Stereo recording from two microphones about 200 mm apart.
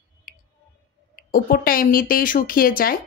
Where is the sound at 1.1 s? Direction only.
45° left (ahead or behind).